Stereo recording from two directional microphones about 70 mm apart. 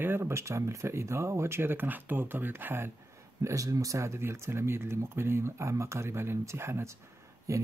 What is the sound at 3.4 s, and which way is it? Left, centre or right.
Speech, right.